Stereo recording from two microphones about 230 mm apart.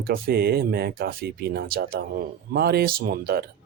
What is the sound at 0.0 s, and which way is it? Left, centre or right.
Speech, right.